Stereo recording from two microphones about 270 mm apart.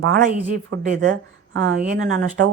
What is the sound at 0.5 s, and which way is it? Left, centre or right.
Mantra, right.